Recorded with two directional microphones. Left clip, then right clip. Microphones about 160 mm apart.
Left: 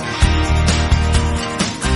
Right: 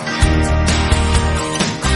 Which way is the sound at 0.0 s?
Centre (ahead or behind).